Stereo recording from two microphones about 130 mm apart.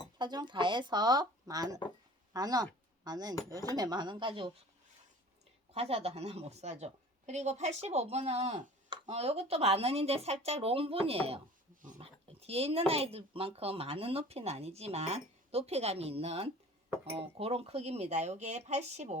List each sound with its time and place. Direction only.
0.2 s speech: 35° right (ahead or behind)
5.7 s speech: 50° right (ahead or behind)
12.5 s speech: 50° right (ahead or behind)